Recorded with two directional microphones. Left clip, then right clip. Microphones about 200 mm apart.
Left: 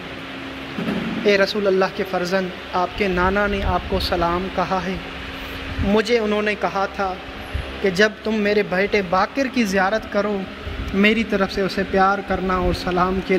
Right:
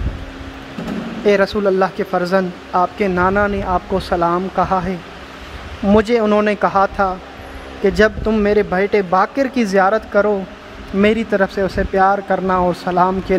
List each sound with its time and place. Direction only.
1.2 s speech: 20° right (ahead or behind)
5.9 s speech: 20° right (ahead or behind)